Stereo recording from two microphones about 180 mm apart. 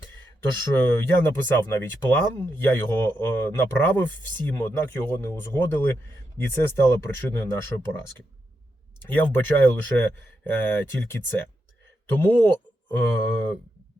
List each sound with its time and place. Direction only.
0.8 s speech: 10° left (ahead or behind)
9.0 s speech: 10° left (ahead or behind)